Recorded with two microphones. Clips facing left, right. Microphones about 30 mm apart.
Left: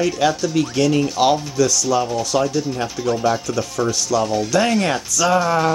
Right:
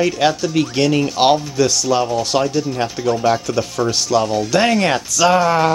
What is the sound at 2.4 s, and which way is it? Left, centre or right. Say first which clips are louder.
Speech: right 2 dB; right.